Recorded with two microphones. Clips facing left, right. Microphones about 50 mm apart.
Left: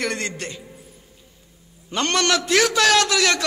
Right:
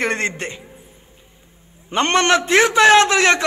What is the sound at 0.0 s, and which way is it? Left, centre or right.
Speech, right.